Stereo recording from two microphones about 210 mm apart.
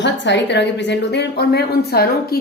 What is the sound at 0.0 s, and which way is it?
A woman's voice, 55° left (ahead or behind).